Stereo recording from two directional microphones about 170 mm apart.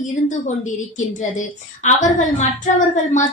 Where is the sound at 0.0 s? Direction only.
45° left (ahead or behind).